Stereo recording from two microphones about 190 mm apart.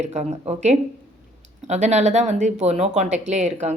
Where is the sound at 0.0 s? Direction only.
35° right (ahead or behind).